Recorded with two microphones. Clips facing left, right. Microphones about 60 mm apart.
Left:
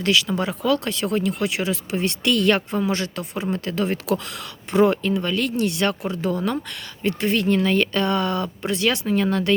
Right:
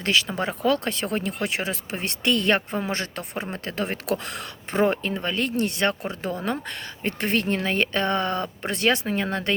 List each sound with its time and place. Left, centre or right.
0.0 s speech: right